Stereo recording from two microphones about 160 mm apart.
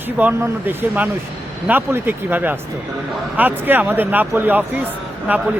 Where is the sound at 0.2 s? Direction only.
10° right (ahead or behind).